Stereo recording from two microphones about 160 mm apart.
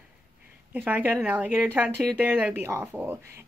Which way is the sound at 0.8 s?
10° right (ahead or behind).